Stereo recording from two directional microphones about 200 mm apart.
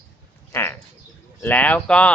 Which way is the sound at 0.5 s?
10° left (ahead or behind).